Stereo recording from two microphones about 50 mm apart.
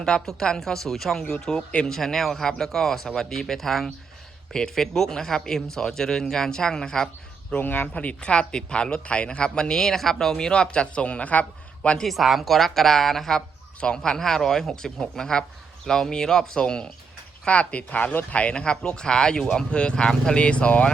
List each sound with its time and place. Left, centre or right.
0.3 s speech: centre
7.5 s speech: left
7.9 s speech: left
12.0 s a woman's voice: centre; by 20.9 s left